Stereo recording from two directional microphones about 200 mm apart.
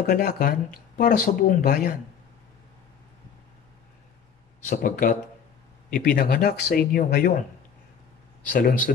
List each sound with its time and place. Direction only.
0.1 s speech: 50° left (ahead or behind)
4.6 s speech: 45° left (ahead or behind)
8.5 s speech: 45° left (ahead or behind)